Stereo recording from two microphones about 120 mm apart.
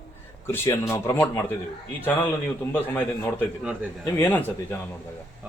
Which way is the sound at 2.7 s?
15° left (ahead or behind).